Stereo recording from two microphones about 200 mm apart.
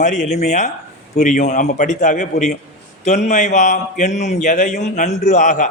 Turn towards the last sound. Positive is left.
turn(degrees=40)  # may be behind; listen again after turning